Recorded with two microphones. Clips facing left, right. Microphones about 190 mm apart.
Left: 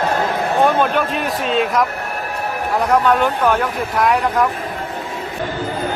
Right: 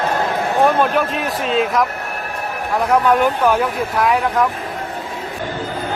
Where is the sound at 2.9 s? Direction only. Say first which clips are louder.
Right 1 dB; 10° right (ahead or behind).